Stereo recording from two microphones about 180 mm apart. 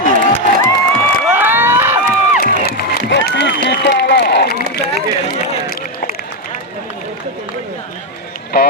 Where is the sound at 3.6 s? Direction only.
70° left (ahead or behind).